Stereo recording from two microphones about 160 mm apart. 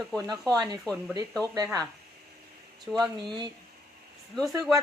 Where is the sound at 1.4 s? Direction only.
25° right (ahead or behind).